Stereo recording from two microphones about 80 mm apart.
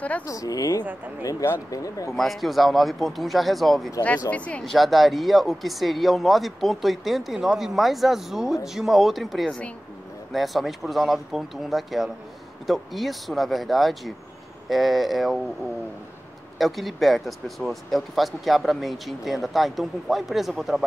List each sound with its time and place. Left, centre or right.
0.3 s a woman's voice: left
2.1 s speech: centre
4.3 s speech: centre
4.6 s speech: centre
16.5 s speech: centre